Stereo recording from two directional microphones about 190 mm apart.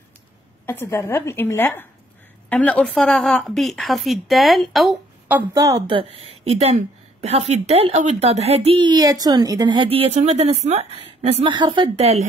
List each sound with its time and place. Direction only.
0.7 s a woman's voice: 15° left (ahead or behind)
5.5 s a woman's voice: 20° right (ahead or behind)